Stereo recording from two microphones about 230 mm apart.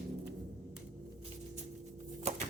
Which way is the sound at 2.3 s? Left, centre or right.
Right.